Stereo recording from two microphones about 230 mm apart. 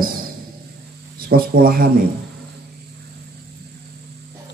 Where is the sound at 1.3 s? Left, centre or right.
Right.